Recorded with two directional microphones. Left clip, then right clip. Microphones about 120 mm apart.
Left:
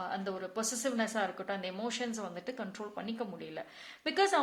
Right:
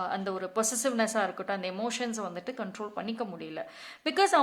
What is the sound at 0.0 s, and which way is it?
A woman's voice, 25° right (ahead or behind).